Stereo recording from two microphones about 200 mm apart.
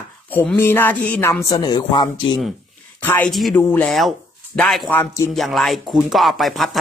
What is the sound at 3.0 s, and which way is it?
A woman's voice, 5° left (ahead or behind).